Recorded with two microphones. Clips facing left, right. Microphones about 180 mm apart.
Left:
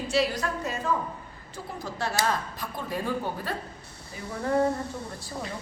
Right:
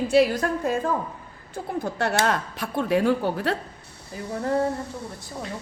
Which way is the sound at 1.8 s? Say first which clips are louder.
Right 4 dB; 65° right (ahead or behind).